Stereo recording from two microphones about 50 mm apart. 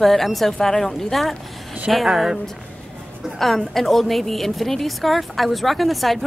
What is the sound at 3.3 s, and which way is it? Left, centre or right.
A woman's voice, centre.